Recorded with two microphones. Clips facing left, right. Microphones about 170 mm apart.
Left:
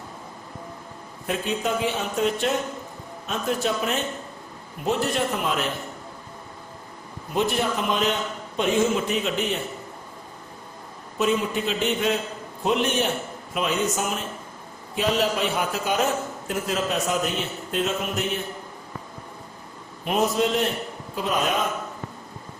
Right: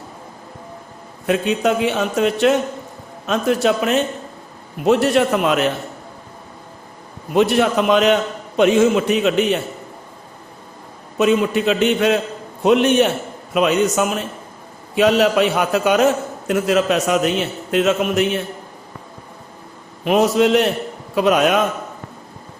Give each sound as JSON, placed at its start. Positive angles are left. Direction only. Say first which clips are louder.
{"t": 1.3, "sound": "a man's voice", "louder": "right 8 dB", "side_deg": -75}
{"t": 7.3, "sound": "a man's voice", "louder": "right 9 dB", "side_deg": -75}
{"t": 11.2, "sound": "a man's voice", "louder": "right 7 dB", "side_deg": -80}
{"t": 20.1, "sound": "a man's voice", "louder": "right 8 dB", "side_deg": -80}